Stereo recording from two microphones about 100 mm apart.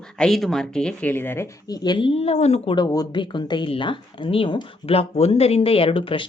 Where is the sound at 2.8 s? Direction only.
40° left (ahead or behind).